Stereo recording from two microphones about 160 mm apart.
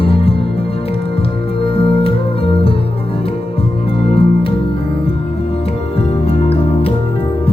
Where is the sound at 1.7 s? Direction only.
35° left (ahead or behind).